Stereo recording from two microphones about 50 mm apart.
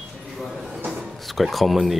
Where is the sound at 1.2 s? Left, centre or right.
Centre.